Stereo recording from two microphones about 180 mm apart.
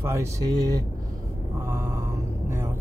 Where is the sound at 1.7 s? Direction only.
15° right (ahead or behind).